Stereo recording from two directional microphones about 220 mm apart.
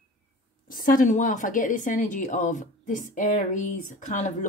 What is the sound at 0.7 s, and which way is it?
A woman's voice, 40° left (ahead or behind).